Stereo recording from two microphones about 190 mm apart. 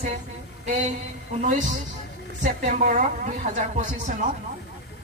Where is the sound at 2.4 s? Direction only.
40° right (ahead or behind).